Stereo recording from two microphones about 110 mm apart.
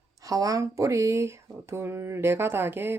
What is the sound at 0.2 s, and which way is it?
Speech, 30° right (ahead or behind).